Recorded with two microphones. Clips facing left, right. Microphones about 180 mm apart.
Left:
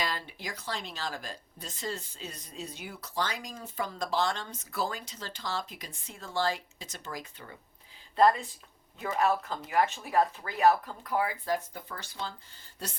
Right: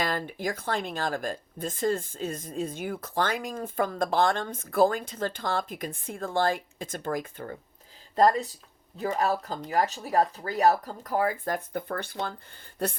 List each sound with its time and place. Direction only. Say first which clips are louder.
0.0 s speech: right 6 dB; 50° right (ahead or behind)